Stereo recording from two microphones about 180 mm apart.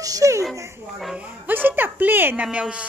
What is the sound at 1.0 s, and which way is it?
A woman's voice, 5° right (ahead or behind).